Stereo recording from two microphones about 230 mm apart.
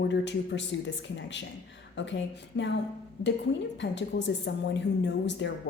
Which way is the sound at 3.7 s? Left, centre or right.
Left.